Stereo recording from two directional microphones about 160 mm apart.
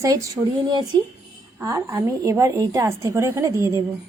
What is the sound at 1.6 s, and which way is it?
A woman's voice, 20° right (ahead or behind).